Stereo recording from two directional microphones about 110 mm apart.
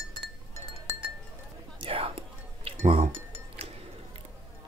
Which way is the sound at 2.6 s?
75° right (ahead or behind).